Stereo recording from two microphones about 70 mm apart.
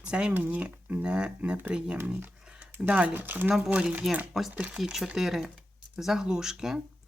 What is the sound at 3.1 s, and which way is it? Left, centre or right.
Speech, right.